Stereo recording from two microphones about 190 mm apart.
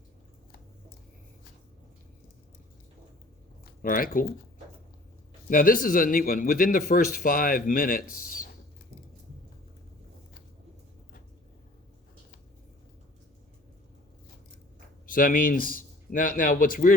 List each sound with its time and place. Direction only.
3.8 s a man's voice: 50° left (ahead or behind)
5.5 s a man's voice: 50° left (ahead or behind)
15.0 s speech: 50° left (ahead or behind)